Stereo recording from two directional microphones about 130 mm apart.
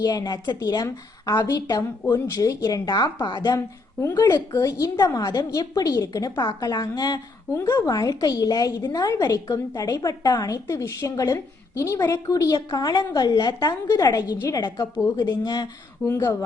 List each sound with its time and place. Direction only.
0.0 s a woman's voice: 30° left (ahead or behind)